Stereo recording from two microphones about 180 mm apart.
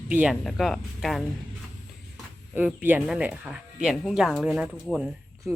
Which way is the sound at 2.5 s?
10° right (ahead or behind).